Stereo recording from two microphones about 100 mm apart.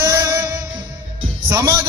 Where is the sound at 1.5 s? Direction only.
25° right (ahead or behind).